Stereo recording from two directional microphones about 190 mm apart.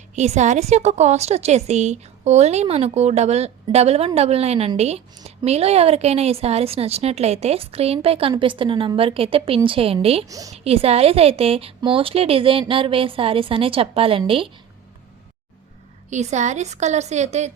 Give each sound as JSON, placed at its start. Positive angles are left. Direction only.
{"t": 0.2, "sound": "a woman's voice", "side_deg": -40}
{"t": 10.2, "sound": "a woman's voice", "side_deg": -20}
{"t": 10.5, "sound": "a woman's voice", "side_deg": -30}
{"t": 16.0, "sound": "a woman's voice", "side_deg": -40}